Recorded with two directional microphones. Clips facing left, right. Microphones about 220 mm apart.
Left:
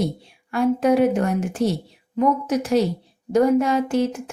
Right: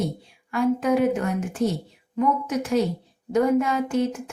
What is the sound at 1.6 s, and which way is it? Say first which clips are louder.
Speech: left 2 dB; 80° left.